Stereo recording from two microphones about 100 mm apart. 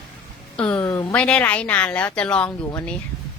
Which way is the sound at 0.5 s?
10° left (ahead or behind).